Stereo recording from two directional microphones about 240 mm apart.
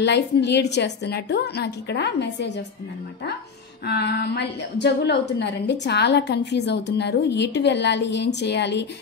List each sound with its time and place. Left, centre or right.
0.0 s a woman's voice: left
3.8 s a woman's voice: left